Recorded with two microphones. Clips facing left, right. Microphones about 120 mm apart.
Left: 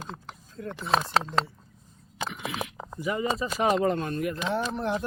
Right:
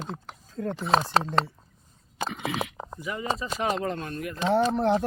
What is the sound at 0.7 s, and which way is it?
Speech, 30° right (ahead or behind).